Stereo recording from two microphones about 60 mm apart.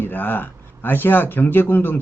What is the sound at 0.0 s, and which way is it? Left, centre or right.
Speech, left.